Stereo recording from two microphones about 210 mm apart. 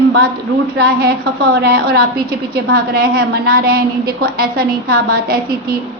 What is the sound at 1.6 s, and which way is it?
A woman's voice, 50° right (ahead or behind).